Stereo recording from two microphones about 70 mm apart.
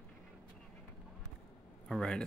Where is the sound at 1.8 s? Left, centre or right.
Centre.